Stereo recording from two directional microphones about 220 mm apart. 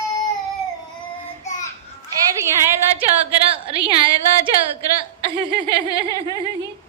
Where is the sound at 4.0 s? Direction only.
20° right (ahead or behind).